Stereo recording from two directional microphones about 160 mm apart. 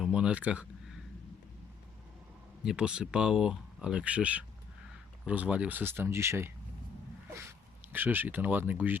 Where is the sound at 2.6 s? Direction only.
5° right (ahead or behind).